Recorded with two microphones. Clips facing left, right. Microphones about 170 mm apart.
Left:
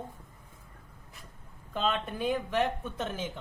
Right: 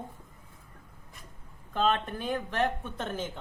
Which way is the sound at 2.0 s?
10° left (ahead or behind).